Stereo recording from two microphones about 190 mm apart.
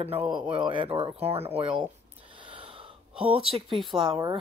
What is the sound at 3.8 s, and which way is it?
Speech, 25° right (ahead or behind).